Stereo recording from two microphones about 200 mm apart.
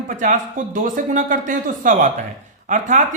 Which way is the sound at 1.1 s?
40° right (ahead or behind).